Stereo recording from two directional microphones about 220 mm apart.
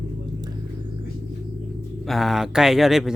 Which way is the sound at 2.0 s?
Centre (ahead or behind).